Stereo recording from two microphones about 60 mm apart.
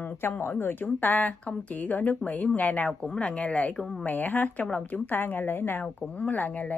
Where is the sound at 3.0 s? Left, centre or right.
Centre.